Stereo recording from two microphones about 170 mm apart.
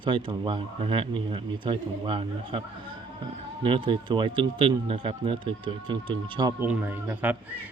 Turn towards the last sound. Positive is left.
turn(degrees=-10)  # may be behind; listen again after turning